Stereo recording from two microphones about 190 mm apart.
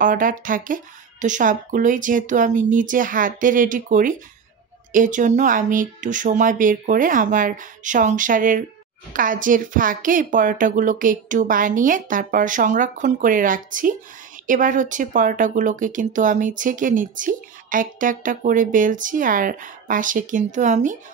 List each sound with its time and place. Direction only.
0.0 s speech: 45° right (ahead or behind)